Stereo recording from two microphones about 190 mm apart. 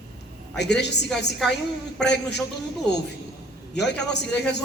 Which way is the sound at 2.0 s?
60° left (ahead or behind).